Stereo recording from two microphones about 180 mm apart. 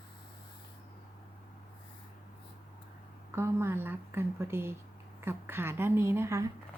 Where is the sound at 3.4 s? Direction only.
15° right (ahead or behind).